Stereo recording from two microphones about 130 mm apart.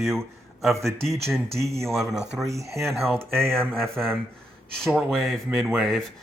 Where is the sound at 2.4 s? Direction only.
25° right (ahead or behind).